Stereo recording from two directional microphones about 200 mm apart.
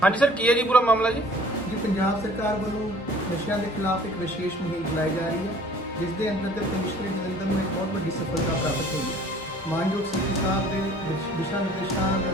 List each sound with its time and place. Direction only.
0.0 s a man's voice: 5° left (ahead or behind)